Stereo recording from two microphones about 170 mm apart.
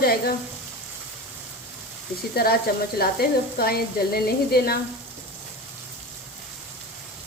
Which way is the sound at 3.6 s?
65° left (ahead or behind).